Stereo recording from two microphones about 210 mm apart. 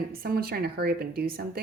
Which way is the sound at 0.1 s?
45° right (ahead or behind).